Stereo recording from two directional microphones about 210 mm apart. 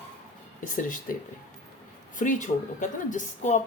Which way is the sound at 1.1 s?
40° left (ahead or behind).